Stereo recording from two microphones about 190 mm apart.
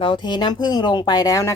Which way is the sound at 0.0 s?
25° left (ahead or behind).